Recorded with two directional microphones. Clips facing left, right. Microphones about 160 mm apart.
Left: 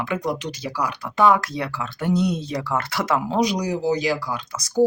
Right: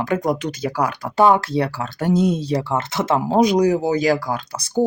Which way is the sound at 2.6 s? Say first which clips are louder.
Right 3 dB; 25° right (ahead or behind).